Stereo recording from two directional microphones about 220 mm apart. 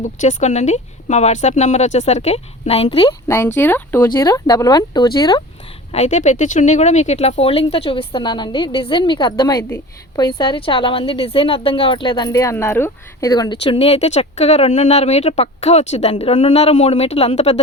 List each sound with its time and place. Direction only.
0.0 s speech: 35° left (ahead or behind)
3.2 s speech: 10° left (ahead or behind)
5.9 s speech: 30° left (ahead or behind)